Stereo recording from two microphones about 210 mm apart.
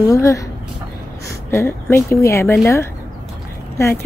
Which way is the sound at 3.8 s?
15° left (ahead or behind).